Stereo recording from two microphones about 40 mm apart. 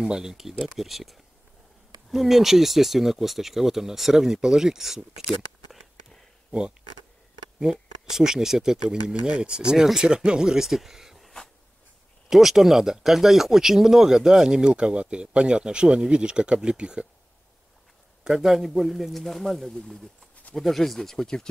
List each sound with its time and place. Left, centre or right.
0.0 s a man's voice: centre
7.6 s speech: centre
8.8 s speech: right; by 11.1 s centre
12.3 s speech: centre; by 17.0 s right
18.2 s a man's voice: centre